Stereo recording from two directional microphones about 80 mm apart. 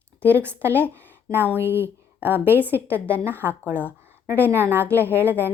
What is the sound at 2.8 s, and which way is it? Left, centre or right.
Speech, centre.